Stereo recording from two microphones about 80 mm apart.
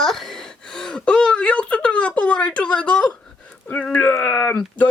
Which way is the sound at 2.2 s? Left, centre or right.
Centre.